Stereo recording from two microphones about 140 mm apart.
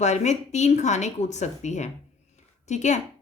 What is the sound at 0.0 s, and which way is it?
A woman's voice, 55° left (ahead or behind).